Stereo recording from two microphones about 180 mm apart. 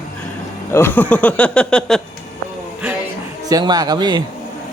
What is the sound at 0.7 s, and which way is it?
Speech, 10° left (ahead or behind).